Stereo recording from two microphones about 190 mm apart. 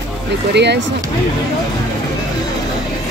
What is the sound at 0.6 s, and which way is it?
Speech, 65° right (ahead or behind).